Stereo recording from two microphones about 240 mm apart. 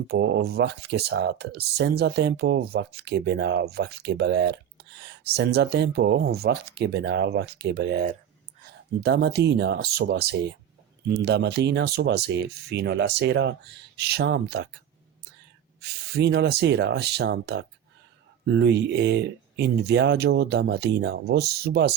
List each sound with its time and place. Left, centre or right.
0.1 s speech: right
15.8 s speech: right